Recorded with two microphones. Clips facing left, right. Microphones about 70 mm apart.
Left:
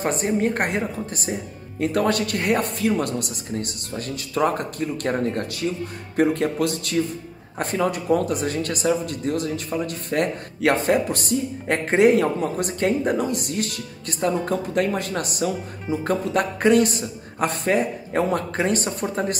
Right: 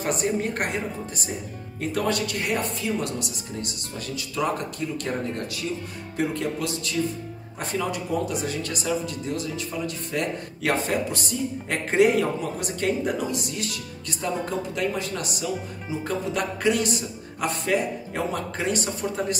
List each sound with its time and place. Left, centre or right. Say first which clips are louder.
0.0 s a woman's voice: left 3 dB; left